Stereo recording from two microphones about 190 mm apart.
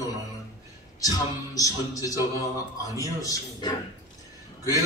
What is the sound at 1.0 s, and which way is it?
A man's voice, 20° left (ahead or behind).